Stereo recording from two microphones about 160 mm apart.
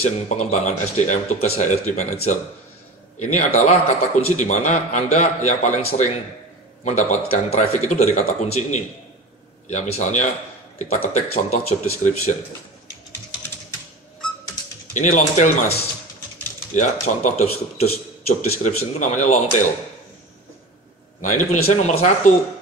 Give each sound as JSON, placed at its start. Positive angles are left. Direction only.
{"t": 0.0, "sound": "a man's voice", "side_deg": 45}
{"t": 3.2, "sound": "a man's voice", "side_deg": 50}
{"t": 15.0, "sound": "a man's voice", "side_deg": 50}
{"t": 16.7, "sound": "a man's voice", "side_deg": 50}
{"t": 21.2, "sound": "a man's voice", "side_deg": 50}